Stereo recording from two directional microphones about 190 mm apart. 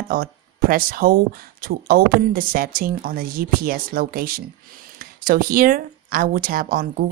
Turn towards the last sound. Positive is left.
turn(degrees=-50)  # may be behind; listen again after turning